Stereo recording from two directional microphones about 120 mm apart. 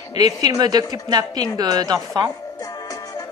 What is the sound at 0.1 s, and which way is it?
Speech, 35° right (ahead or behind).